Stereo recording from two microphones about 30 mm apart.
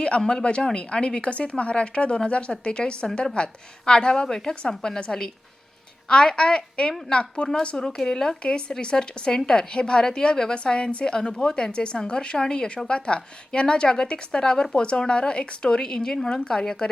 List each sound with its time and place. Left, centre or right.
0.2 s a woman's voice: centre
0.4 s a woman's voice: left
6.1 s a woman's voice: left
7.9 s a woman's voice: left